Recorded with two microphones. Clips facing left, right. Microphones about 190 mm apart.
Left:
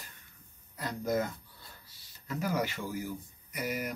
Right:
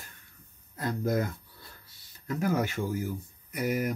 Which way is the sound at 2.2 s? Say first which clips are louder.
Right 4 dB; 50° right (ahead or behind).